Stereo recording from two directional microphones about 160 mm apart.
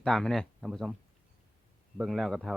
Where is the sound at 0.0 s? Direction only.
Centre (ahead or behind).